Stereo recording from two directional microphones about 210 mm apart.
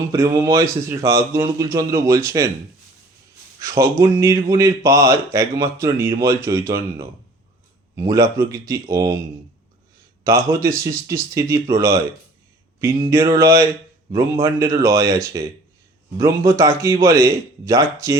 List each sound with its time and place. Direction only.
0.1 s speech: 15° right (ahead or behind)
3.6 s speech: 15° right (ahead or behind)
10.2 s speech: 15° right (ahead or behind)